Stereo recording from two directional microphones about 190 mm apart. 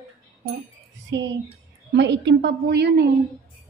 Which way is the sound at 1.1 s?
75° right (ahead or behind).